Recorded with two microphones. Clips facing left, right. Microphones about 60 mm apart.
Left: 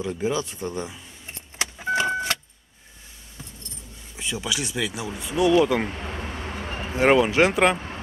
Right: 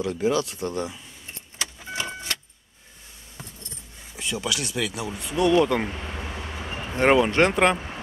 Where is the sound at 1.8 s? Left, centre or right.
Left.